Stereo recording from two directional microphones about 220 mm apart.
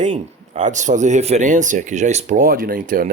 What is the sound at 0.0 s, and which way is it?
Speech, 35° right (ahead or behind).